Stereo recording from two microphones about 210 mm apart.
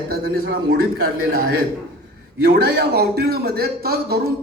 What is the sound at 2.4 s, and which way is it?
A man's voice, 50° right (ahead or behind).